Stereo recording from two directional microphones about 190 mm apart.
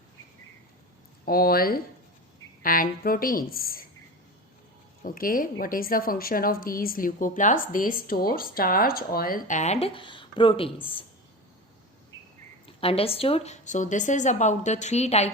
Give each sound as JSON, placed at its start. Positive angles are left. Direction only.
{"t": 1.2, "sound": "a woman's voice", "side_deg": 50}
{"t": 5.0, "sound": "a woman's voice", "side_deg": 45}
{"t": 12.6, "sound": "a woman's voice", "side_deg": 30}